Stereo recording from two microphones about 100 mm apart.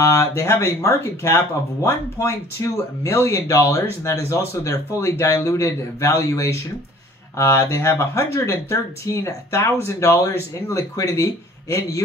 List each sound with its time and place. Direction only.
0.0 s speech: 30° left (ahead or behind)